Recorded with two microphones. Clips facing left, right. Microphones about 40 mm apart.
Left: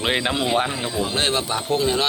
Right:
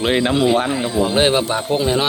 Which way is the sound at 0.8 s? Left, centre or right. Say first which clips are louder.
Right 7 dB; centre.